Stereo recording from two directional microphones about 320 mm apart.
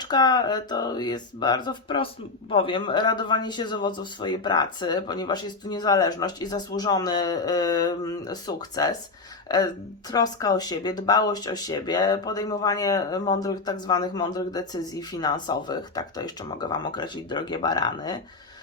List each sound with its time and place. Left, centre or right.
0.0 s speech: centre
10.1 s speech: centre